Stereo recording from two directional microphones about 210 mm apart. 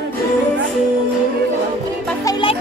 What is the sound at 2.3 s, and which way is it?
Music, 25° left (ahead or behind).